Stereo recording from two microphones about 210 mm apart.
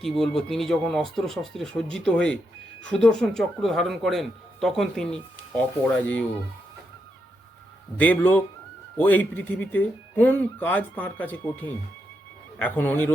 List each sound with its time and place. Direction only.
0.0 s speech: centre (ahead or behind)
7.9 s speech: 5° left (ahead or behind)